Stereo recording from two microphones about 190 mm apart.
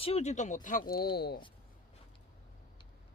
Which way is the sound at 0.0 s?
35° left (ahead or behind).